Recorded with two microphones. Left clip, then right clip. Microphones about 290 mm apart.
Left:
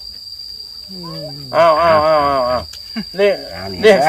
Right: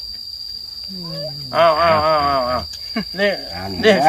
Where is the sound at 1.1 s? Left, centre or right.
Left.